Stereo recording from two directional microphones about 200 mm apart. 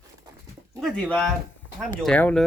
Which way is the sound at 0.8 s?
5° left (ahead or behind).